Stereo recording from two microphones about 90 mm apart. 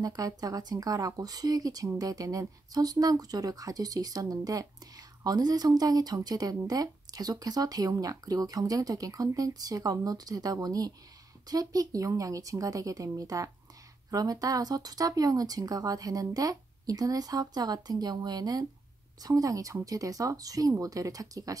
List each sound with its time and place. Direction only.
0.0 s speech: 45° right (ahead or behind)